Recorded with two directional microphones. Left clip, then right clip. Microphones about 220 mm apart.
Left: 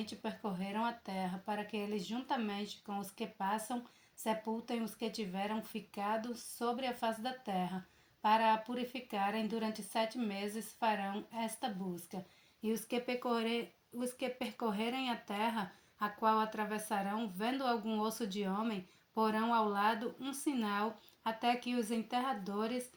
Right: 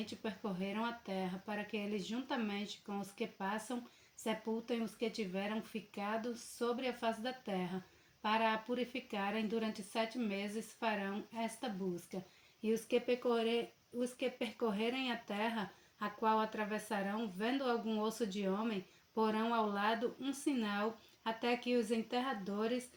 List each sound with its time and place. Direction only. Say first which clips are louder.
0.0 s speech: left 1 dB; 30° left (ahead or behind)